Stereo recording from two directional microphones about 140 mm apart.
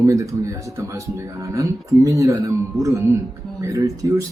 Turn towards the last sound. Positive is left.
turn(degrees=-25)  # may be behind; listen again after turning